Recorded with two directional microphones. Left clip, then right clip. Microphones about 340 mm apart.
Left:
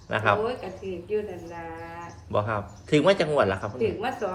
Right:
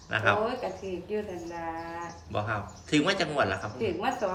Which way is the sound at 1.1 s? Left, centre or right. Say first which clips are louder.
Left 5 dB; centre.